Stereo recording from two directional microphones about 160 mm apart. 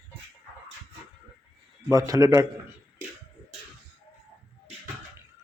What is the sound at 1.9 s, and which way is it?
Speech, 20° right (ahead or behind).